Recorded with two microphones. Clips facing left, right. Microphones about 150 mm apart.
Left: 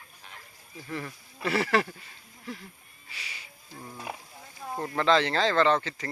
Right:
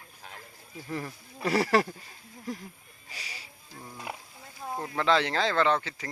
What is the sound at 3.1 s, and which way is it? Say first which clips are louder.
Music: right 1 dB; 35° right (ahead or behind).